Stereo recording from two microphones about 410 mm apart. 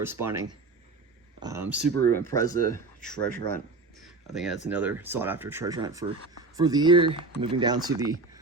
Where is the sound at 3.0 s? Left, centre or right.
Centre.